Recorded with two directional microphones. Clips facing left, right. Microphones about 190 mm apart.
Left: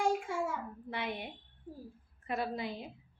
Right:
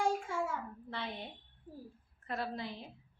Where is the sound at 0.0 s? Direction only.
15° left (ahead or behind).